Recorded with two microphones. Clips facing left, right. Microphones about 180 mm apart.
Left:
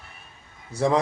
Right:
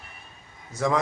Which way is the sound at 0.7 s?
30° left (ahead or behind).